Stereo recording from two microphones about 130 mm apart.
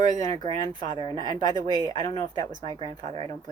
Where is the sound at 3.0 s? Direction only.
60° right (ahead or behind).